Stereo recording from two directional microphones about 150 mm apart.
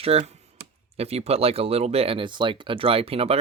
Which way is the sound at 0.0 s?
45° right (ahead or behind).